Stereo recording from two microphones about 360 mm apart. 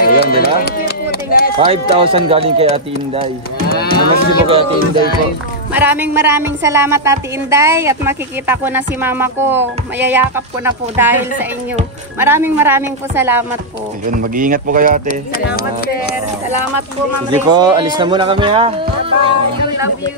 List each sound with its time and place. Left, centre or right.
0.0 s speech: left
1.6 s a woman's voice: centre
3.6 s moo: left
4.5 s a woman's voice: centre
5.7 s a woman's voice: centre
12.2 s a woman's voice: centre
14.1 s speech: right
15.0 s speech: left
17.5 s a woman's voice: centre